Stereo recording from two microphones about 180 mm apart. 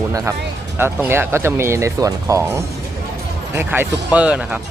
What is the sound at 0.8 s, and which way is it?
Speech, 10° right (ahead or behind).